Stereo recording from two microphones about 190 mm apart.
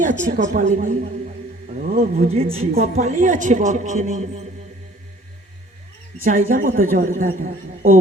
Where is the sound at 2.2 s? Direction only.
30° right (ahead or behind).